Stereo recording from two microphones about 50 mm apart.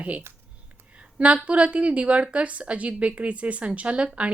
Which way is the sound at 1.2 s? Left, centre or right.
Right.